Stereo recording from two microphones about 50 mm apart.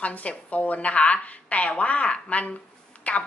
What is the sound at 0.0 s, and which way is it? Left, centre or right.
A woman's voice, left.